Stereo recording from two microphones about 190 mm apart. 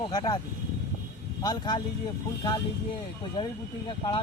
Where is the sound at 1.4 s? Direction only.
20° left (ahead or behind).